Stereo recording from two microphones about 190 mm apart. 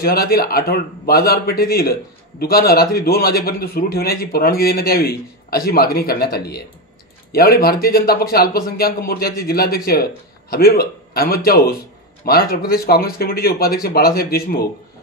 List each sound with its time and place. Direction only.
0.0 s a man's voice: 55° left (ahead or behind)